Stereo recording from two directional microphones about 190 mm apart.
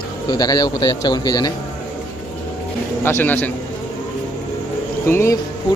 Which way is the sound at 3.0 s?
10° left (ahead or behind).